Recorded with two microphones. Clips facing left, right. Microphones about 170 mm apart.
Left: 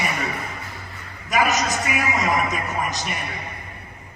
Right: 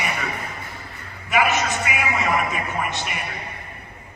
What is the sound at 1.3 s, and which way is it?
Speech, 40° left (ahead or behind).